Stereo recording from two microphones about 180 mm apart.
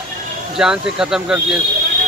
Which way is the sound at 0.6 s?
5° right (ahead or behind).